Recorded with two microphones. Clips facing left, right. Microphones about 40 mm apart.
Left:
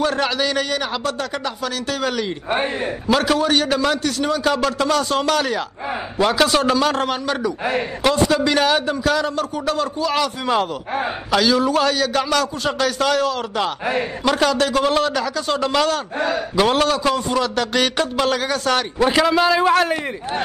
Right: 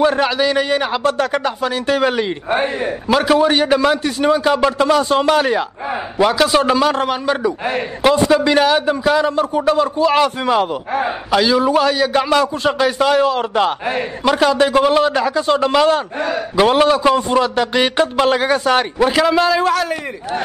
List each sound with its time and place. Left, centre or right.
0.0 s a man's voice: centre
0.7 s a man's voice: right
2.5 s a man's voice: centre
6.3 s a man's voice: centre; by 10.5 s right
10.5 s a man's voice: centre; by 13.7 s right
13.8 s a man's voice: centre
15.1 s a man's voice: right
18.7 s a man's voice: centre
19.0 s a man's voice: centre
19.7 s a man's voice: left